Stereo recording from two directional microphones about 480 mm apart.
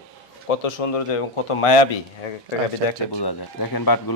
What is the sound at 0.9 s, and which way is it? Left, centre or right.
Speech, left.